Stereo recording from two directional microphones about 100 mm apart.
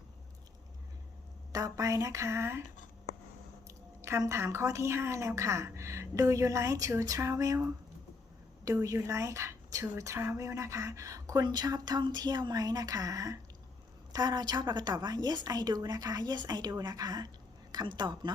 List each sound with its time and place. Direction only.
1.5 s a woman's voice: 35° right (ahead or behind)
3.7 s a woman's voice: 30° right (ahead or behind); by 18.3 s 50° right (ahead or behind)